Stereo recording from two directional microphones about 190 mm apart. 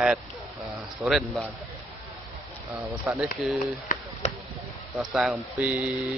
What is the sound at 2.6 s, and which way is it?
Speech, 15° right (ahead or behind).